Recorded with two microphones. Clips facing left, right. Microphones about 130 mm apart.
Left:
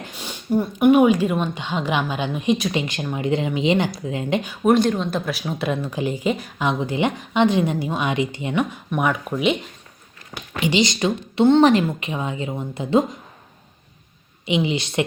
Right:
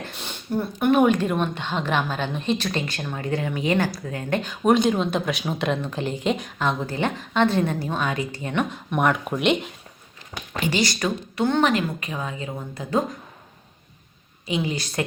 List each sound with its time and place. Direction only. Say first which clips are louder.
0.0 s speech: left 1 dB; 10° left (ahead or behind)
4.6 s speech: left 1 dB; centre (ahead or behind)
10.3 s speech: left 4 dB; 15° left (ahead or behind)
14.4 s speech: left 4 dB; 20° left (ahead or behind)